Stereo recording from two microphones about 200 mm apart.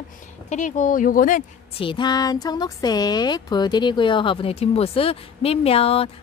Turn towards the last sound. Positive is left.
turn(degrees=30)  # may be behind; listen again after turning